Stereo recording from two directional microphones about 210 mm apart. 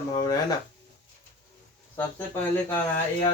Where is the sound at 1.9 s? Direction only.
10° left (ahead or behind).